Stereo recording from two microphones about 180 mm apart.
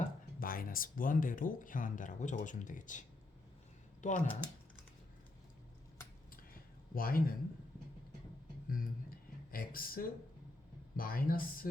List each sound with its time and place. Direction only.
0.3 s speech: 55° left (ahead or behind)
4.0 s speech: 45° left (ahead or behind)
6.9 s speech: 55° left (ahead or behind)
8.7 s a sound: 50° left (ahead or behind)
10.9 s speech: 50° left (ahead or behind)